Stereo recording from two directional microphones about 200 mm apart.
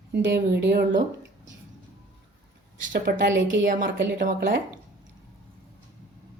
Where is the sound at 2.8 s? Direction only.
40° right (ahead or behind).